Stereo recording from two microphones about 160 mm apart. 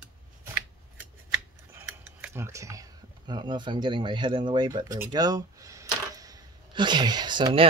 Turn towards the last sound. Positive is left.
turn(degrees=-30)  # may be behind; listen again after turning